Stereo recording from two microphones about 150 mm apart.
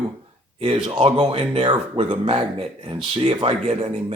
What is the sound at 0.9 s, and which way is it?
Speech, 35° right (ahead or behind).